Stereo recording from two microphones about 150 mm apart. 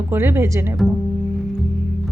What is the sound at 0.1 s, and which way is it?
Speech, 15° right (ahead or behind).